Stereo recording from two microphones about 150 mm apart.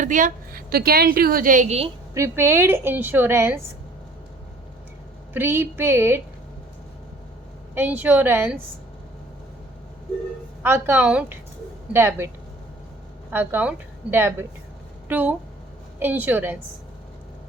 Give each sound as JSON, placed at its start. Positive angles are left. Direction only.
{"t": 0.0, "sound": "a woman's voice", "side_deg": -60}
{"t": 2.1, "sound": "a woman's voice", "side_deg": -20}
{"t": 5.3, "sound": "a woman's voice", "side_deg": -15}
{"t": 7.8, "sound": "a woman's voice", "side_deg": -10}
{"t": 10.6, "sound": "a woman's voice", "side_deg": -15}
{"t": 13.3, "sound": "a woman's voice", "side_deg": -10}